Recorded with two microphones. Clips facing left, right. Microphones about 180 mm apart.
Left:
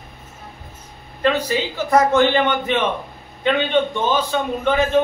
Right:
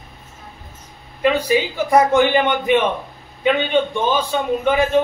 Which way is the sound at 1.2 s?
10° right (ahead or behind).